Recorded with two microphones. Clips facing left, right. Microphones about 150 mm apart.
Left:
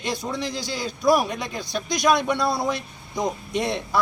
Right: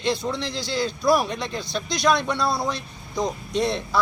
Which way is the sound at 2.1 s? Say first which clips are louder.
Left 1 dB; 45° left (ahead or behind).